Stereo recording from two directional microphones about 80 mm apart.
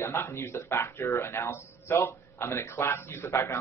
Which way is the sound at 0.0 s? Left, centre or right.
Left.